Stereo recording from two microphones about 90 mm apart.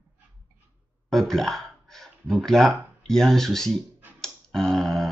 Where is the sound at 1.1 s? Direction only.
5° left (ahead or behind).